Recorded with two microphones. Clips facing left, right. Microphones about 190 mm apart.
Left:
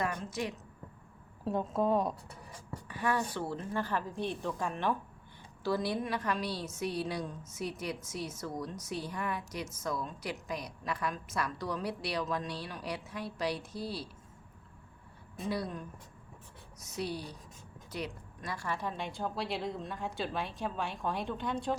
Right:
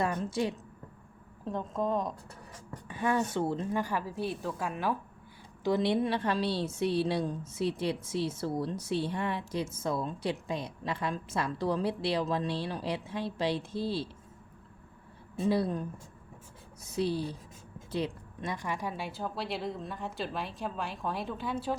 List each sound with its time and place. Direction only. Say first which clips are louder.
0.0 s a woman's voice: right 5 dB; 30° right (ahead or behind)
1.5 s a woman's voice: left 2 dB; 5° left (ahead or behind)
2.8 s speech: right 3 dB; 25° right (ahead or behind); by 4.9 s 5° right (ahead or behind)
5.6 s a woman's voice: right 5 dB; 20° right (ahead or behind)
15.4 s a woman's voice: right 7 dB; 30° right (ahead or behind); by 21.8 s 5° right (ahead or behind)